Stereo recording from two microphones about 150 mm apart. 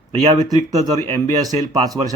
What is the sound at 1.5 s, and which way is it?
Speech, 25° right (ahead or behind).